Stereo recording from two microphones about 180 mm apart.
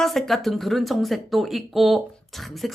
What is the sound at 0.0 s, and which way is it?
A woman's voice, centre (ahead or behind).